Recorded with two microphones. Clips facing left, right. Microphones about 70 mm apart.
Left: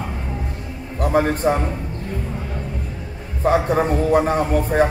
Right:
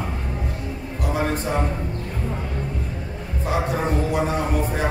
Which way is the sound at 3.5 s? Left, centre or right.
Left.